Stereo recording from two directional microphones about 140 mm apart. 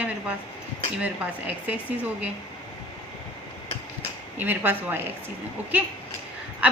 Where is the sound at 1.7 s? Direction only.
10° right (ahead or behind).